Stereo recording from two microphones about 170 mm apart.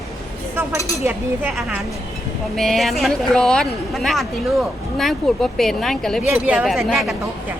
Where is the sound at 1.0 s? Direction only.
10° right (ahead or behind).